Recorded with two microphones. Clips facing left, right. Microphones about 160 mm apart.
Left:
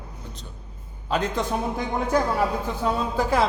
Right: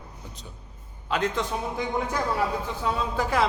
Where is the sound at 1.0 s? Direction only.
40° left (ahead or behind).